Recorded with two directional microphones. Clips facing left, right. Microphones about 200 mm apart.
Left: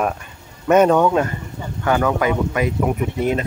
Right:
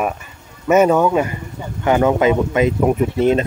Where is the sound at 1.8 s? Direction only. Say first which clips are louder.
Right 4 dB; 20° right (ahead or behind).